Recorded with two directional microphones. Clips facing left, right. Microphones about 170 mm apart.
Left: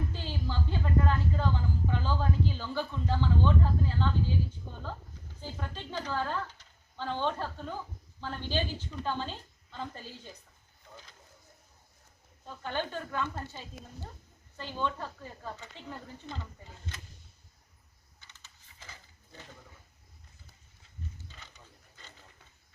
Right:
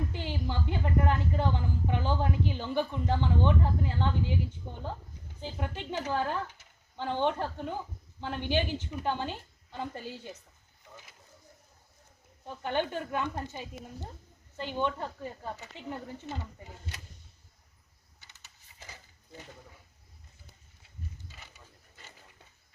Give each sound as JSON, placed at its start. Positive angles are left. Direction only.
{"t": 0.1, "sound": "speech", "side_deg": -15}
{"t": 5.4, "sound": "speech", "side_deg": -15}
{"t": 12.5, "sound": "speech", "side_deg": -20}
{"t": 21.3, "sound": "a sound", "side_deg": -10}